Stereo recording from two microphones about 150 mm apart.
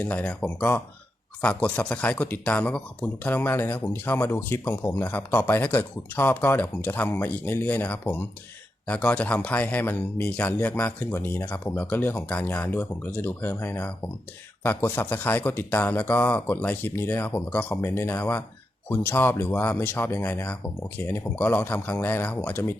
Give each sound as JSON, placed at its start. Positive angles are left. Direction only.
{"t": 0.0, "sound": "speech", "side_deg": 10}